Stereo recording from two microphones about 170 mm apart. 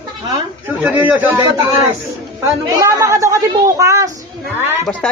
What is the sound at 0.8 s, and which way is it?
Speech, 10° right (ahead or behind).